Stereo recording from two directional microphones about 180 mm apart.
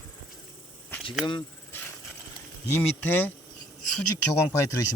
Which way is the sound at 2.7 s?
10° left (ahead or behind).